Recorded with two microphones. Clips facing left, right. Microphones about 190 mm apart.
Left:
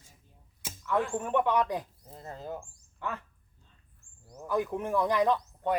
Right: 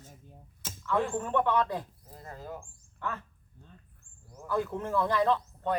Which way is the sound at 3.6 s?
60° right (ahead or behind).